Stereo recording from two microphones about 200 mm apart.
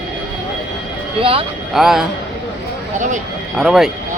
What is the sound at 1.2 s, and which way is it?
Speech, 25° right (ahead or behind).